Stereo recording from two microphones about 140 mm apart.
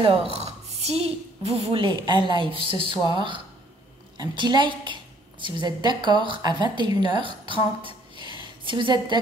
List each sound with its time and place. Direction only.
0.0 s a woman's voice: 50° right (ahead or behind)
1.8 s a woman's voice: 35° right (ahead or behind)